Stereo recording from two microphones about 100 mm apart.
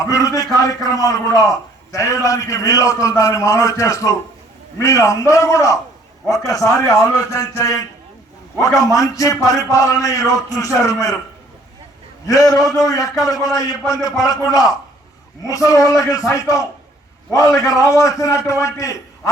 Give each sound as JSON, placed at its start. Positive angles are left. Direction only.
{"t": 0.0, "sound": "a man's voice", "side_deg": 35}
{"t": 12.3, "sound": "a man's voice", "side_deg": 35}